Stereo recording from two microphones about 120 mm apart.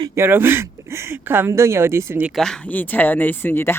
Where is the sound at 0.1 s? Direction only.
20° right (ahead or behind).